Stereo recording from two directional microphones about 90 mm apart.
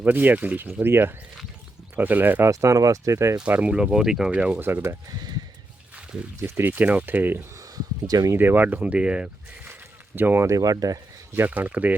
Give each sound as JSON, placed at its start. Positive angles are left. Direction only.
{"t": 0.0, "sound": "speech", "side_deg": -20}
{"t": 2.5, "sound": "speech", "side_deg": -35}
{"t": 3.3, "sound": "speech", "side_deg": -15}
{"t": 4.6, "sound": "speech", "side_deg": -25}
{"t": 6.4, "sound": "speech", "side_deg": -25}
{"t": 8.0, "sound": "speech", "side_deg": -40}
{"t": 8.3, "sound": "speech", "side_deg": -25}
{"t": 10.2, "sound": "speech", "side_deg": -25}
{"t": 10.5, "sound": "speech", "side_deg": -45}
{"t": 11.3, "sound": "speech", "side_deg": -20}